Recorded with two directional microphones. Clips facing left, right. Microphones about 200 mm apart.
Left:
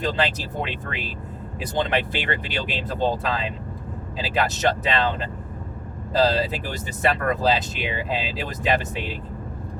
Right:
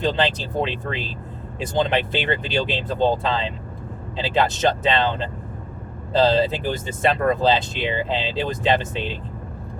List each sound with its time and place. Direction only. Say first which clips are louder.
0.0 s speech: right 3 dB; 25° right (ahead or behind)